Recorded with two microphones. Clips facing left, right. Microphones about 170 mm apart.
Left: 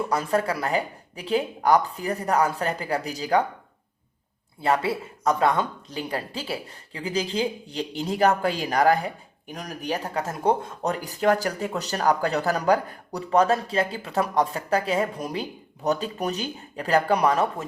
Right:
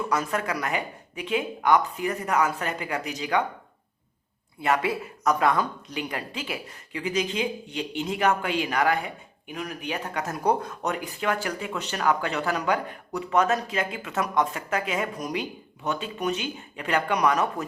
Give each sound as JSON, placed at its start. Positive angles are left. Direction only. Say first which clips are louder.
{"t": 0.0, "sound": "speech", "louder": "left 3 dB", "side_deg": 30}
{"t": 4.6, "sound": "speech", "louder": "left 1 dB", "side_deg": 30}